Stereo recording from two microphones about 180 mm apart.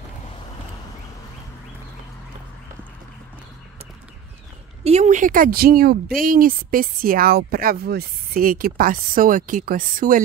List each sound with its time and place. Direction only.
4.8 s speech: 40° right (ahead or behind)